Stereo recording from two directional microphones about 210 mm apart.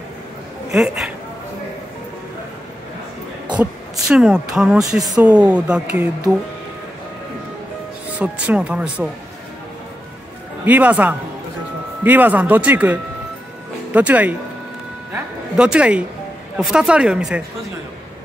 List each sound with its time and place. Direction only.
0.7 s speech: centre (ahead or behind)
4.1 s speech: 5° right (ahead or behind)
8.2 s speech: 5° right (ahead or behind)
10.6 s speech: 5° right (ahead or behind)
15.5 s speech: 5° right (ahead or behind)